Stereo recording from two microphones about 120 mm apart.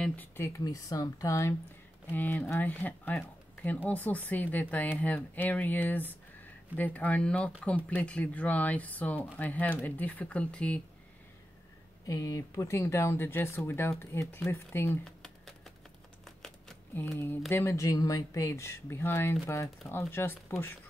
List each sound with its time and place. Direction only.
0.0 s speech: 15° left (ahead or behind)
2.1 s speech: 15° left (ahead or behind)
12.1 s speech: 25° left (ahead or behind)
15.0 s typing: 5° left (ahead or behind)
16.9 s speech: 20° left (ahead or behind)